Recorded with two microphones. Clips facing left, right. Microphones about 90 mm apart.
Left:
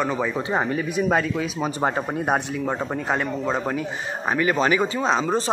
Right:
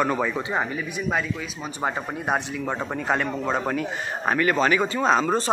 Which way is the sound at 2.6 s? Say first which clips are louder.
Left 1 dB; 5° left (ahead or behind).